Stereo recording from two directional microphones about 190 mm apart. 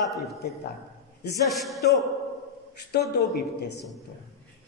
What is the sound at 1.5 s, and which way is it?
Speech, centre (ahead or behind).